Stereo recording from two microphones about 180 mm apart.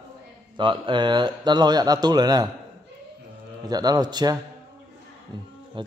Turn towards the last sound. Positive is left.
turn(degrees=-30)  # may be behind; listen again after turning